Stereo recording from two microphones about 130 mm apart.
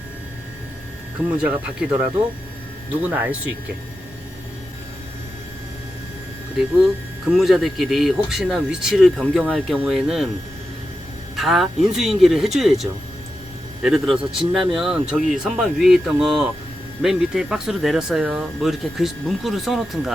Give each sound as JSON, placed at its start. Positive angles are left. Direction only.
{"t": 1.4, "sound": "speech", "side_deg": -10}
{"t": 7.3, "sound": "speech", "side_deg": 0}
{"t": 11.3, "sound": "speech", "side_deg": 0}